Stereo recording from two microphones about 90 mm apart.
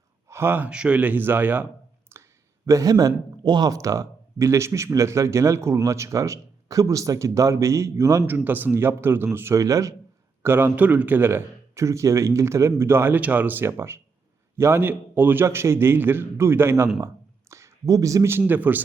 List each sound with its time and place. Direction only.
0.3 s speech: 25° right (ahead or behind)
0.7 s a man's voice: 10° right (ahead or behind)
2.1 s a sound: 30° right (ahead or behind)
2.6 s a man's voice: 40° right (ahead or behind)
3.7 s speech: 35° right (ahead or behind)
8.3 s a man's voice: 20° right (ahead or behind); by 9.9 s 40° right (ahead or behind)
10.4 s a man's voice: 25° right (ahead or behind)